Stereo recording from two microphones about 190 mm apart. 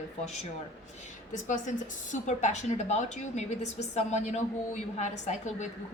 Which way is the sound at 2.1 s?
40° left (ahead or behind).